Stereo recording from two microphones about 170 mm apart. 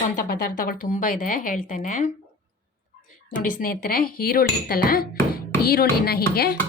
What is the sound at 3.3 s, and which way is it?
A woman's voice, 55° left (ahead or behind).